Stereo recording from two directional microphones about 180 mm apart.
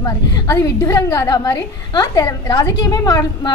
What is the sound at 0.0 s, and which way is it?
A woman's voice, 20° left (ahead or behind).